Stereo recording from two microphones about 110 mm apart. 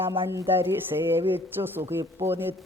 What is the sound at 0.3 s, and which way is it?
Speech, 20° right (ahead or behind).